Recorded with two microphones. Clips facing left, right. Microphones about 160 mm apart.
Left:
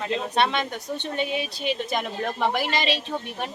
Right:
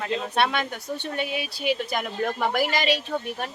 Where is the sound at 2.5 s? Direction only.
25° left (ahead or behind).